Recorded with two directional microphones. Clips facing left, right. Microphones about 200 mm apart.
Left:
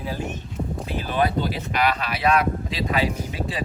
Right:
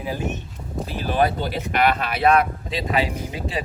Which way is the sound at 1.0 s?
45° right (ahead or behind).